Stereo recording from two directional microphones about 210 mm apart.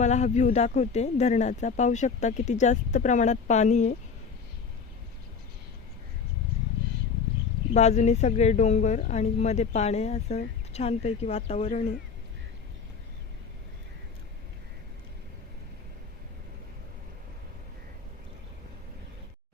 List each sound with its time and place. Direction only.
0.0 s speech: 35° left (ahead or behind)
7.7 s speech: 35° left (ahead or behind)